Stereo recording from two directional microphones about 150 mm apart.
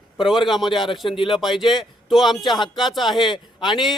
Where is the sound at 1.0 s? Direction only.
35° left (ahead or behind).